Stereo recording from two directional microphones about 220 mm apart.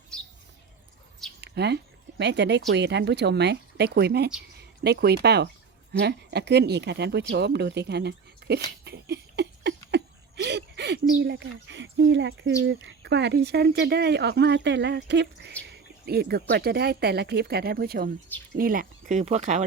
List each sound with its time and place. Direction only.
0.1 s chirp: 5° left (ahead or behind)
1.4 s speech: 50° right (ahead or behind)
8.8 s a sound: 50° right (ahead or behind)
12.6 s speech: 55° right (ahead or behind); by 19.6 s 30° right (ahead or behind)